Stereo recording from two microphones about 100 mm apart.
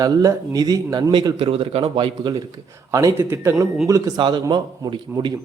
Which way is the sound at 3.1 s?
25° right (ahead or behind).